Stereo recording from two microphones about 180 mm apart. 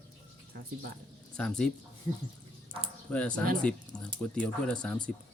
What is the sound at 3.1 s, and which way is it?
Speech, 5° left (ahead or behind).